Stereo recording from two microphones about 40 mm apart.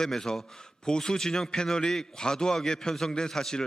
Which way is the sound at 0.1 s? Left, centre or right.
Centre.